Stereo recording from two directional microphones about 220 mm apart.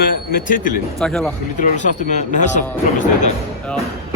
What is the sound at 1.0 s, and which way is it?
Speech, centre (ahead or behind).